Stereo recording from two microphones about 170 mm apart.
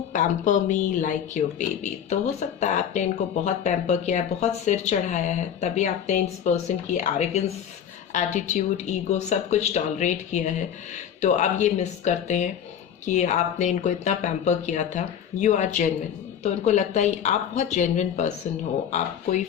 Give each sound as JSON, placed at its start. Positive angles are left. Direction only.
{"t": 0.1, "sound": "speech", "side_deg": 45}